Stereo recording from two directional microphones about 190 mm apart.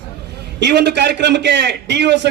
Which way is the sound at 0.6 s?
65° right (ahead or behind).